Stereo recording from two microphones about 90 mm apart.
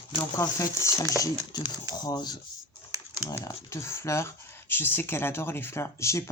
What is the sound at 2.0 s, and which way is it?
Speech, 50° left (ahead or behind).